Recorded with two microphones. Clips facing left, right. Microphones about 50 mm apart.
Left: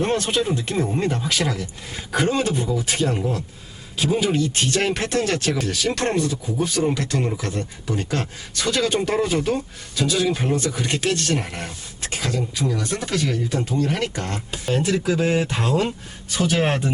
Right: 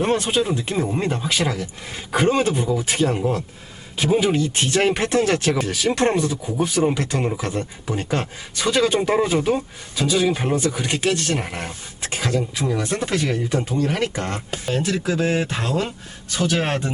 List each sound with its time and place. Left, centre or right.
0.0 s speech: centre
4.4 s speech: right
14.7 s speech: centre
15.3 s speech: centre
15.5 s speech: centre